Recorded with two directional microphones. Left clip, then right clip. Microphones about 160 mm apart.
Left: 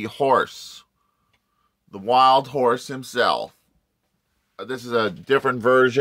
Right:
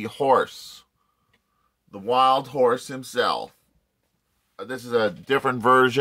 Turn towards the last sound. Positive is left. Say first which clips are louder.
# even
turn(degrees=-5)  # may be behind; listen again after turning